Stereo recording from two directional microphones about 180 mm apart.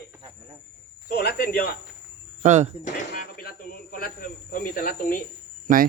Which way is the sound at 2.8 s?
55° left (ahead or behind).